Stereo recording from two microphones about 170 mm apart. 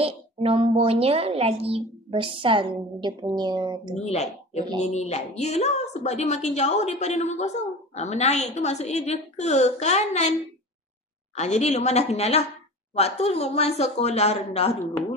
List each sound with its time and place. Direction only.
0.0 s a woman's voice: 35° right (ahead or behind)
3.9 s a woman's voice: 40° left (ahead or behind)
11.3 s a woman's voice: 40° left (ahead or behind)